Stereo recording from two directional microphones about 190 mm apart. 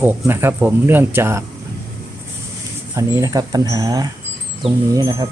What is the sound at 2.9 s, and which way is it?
Speech, 15° right (ahead or behind).